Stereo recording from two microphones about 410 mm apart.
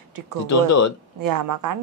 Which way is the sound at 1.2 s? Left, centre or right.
Right.